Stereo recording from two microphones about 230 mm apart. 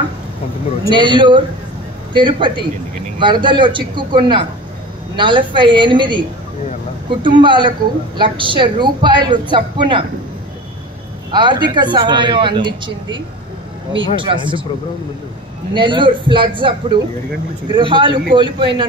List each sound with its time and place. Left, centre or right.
0.8 s speech: right
11.3 s speech: centre
15.7 s speech: right